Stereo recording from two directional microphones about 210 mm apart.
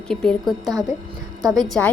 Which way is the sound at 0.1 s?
5° left (ahead or behind).